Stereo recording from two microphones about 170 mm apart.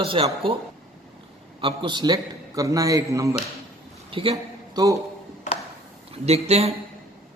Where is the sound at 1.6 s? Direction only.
30° right (ahead or behind).